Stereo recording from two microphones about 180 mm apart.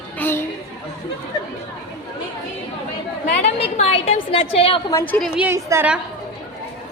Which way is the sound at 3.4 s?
35° left (ahead or behind).